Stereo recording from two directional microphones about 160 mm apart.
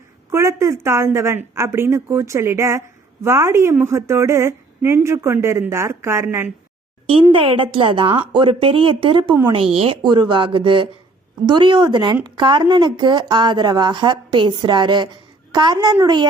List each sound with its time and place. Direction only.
0.3 s a woman's voice: 15° right (ahead or behind)
7.1 s a woman's voice: 35° right (ahead or behind)